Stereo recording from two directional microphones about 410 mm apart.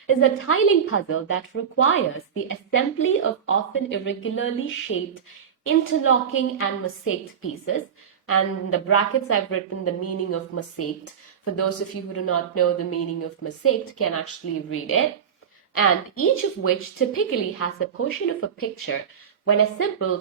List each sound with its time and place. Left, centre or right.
0.1 s a woman's voice: left
8.3 s a woman's voice: left
12.1 s a woman's voice: left